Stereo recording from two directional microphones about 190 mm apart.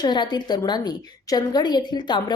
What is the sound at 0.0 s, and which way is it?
A woman's voice, 20° left (ahead or behind).